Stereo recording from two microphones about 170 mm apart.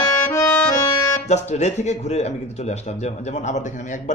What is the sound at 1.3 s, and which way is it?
Speech, 40° left (ahead or behind).